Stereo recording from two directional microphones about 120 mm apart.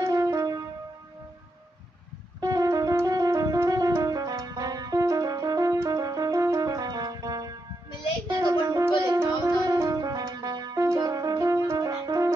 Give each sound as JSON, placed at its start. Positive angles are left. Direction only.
{"t": 0.0, "sound": "keyboard", "side_deg": -30}
{"t": 2.4, "sound": "music", "side_deg": -30}
{"t": 11.8, "sound": "french horn", "side_deg": -30}